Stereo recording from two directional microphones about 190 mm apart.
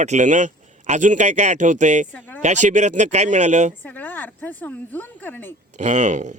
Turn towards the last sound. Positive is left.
turn(degrees=-40)  # may be behind; listen again after turning